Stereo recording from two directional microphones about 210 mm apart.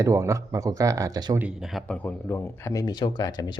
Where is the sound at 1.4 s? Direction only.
5° right (ahead or behind).